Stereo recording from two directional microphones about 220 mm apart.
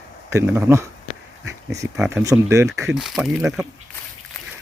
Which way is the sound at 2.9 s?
Centre (ahead or behind).